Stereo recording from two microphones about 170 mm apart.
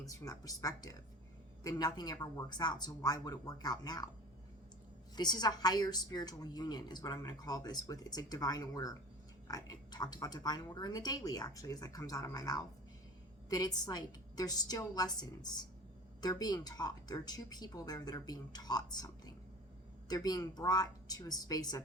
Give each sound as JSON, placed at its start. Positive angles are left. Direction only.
{"t": 0.1, "sound": "speech", "side_deg": 20}
{"t": 5.1, "sound": "speech", "side_deg": 25}